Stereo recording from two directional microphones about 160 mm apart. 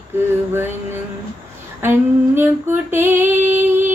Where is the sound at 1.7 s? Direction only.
15° right (ahead or behind).